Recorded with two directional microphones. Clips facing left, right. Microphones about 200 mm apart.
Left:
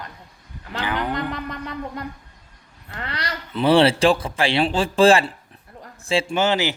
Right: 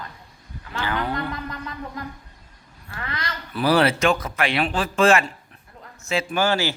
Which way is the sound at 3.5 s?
25° left (ahead or behind).